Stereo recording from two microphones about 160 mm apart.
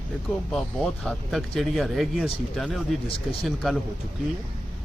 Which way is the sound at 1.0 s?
Centre (ahead or behind).